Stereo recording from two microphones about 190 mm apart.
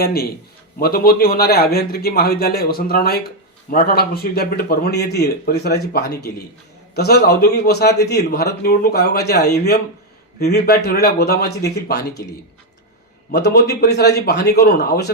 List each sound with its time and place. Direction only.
0.0 s a man's voice: 55° left (ahead or behind)
13.3 s speech: 60° left (ahead or behind)